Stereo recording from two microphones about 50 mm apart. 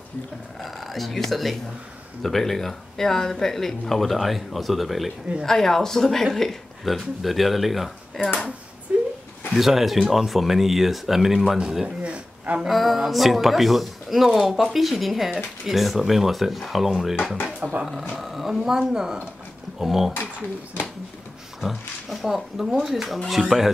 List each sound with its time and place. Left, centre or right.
0.6 s speech: centre
8.9 s a sound: right
9.5 s speech: centre; by 12.6 s right
12.6 s speech: centre
17.6 s speech: right
18.2 s speech: centre
21.5 s speech: centre